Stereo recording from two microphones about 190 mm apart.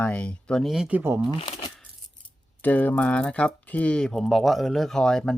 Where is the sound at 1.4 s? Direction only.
25° left (ahead or behind).